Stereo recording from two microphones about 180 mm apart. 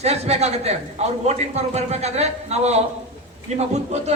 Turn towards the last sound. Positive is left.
turn(degrees=-40)  # may be behind; listen again after turning